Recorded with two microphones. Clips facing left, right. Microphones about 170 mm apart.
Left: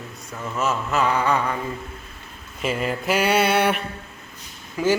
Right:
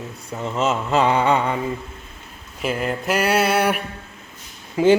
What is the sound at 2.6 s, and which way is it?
Speech, centre (ahead or behind).